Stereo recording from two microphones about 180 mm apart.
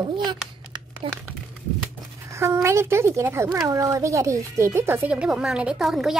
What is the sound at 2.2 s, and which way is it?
Speech, 15° right (ahead or behind).